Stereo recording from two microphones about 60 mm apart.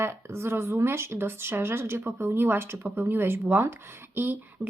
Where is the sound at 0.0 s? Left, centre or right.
Right.